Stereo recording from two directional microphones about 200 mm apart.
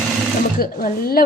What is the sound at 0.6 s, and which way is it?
Speech, 45° left (ahead or behind).